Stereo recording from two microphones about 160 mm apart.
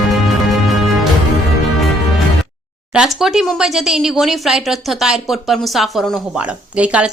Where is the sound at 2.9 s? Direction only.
Centre (ahead or behind).